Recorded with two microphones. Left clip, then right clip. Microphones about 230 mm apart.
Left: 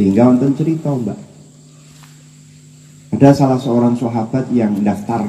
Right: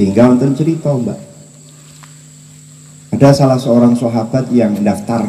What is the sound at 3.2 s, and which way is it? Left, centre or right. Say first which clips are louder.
Speech: right 2 dB; right.